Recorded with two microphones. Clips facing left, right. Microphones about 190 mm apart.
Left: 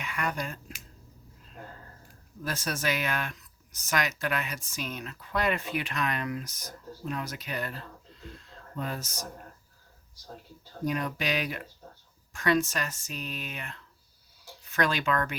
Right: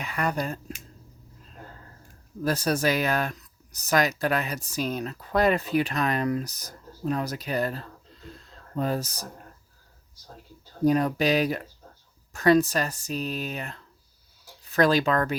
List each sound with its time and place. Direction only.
0.0 s speech: 35° right (ahead or behind)
2.4 s speech: 35° right (ahead or behind)
8.3 s a sound: 40° right (ahead or behind)
10.8 s speech: 35° right (ahead or behind)